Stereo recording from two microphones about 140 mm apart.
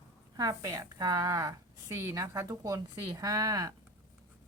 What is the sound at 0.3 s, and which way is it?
A woman's voice, 25° right (ahead or behind).